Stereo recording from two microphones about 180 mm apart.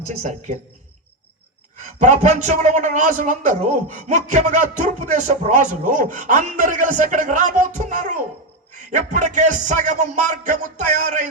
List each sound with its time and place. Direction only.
0.0 s speech: 40° right (ahead or behind)
2.0 s speech: 40° right (ahead or behind)